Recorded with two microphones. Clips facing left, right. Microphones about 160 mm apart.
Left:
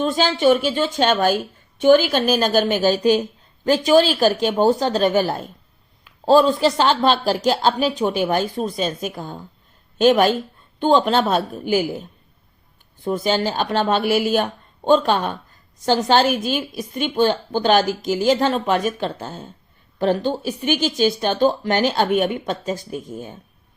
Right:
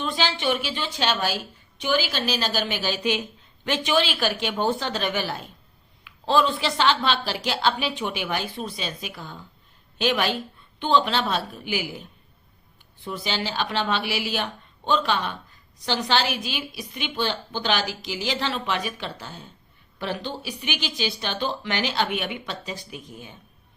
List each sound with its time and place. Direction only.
0.0 s a woman's voice: 45° left (ahead or behind)